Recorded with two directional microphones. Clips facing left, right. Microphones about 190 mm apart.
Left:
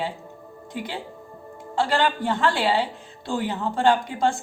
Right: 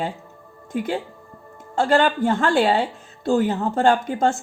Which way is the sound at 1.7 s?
45° right (ahead or behind).